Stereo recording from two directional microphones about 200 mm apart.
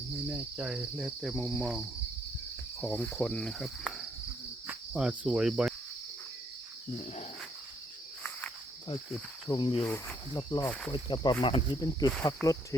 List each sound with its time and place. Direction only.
0.3 s cricket: 5° right (ahead or behind)
2.8 s cricket: 5° left (ahead or behind)
9.5 s speech: 20° left (ahead or behind)
9.8 s speech: 10° left (ahead or behind)
10.6 s cricket: 5° left (ahead or behind)
10.9 s speech: 25° left (ahead or behind)